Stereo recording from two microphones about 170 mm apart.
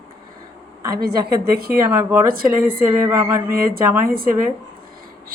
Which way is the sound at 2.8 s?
15° right (ahead or behind).